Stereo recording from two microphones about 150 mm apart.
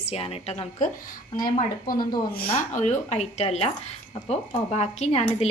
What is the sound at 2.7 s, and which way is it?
A woman's voice, 50° left (ahead or behind).